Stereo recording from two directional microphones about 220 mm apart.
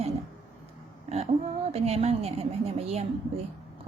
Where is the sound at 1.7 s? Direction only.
30° right (ahead or behind).